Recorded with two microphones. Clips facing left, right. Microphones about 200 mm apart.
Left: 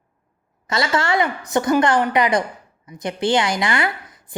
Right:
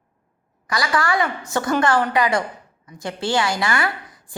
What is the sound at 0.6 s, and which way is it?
A woman's voice, 25° left (ahead or behind).